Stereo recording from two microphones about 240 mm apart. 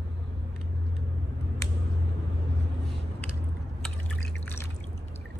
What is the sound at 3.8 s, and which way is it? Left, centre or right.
Drip, centre.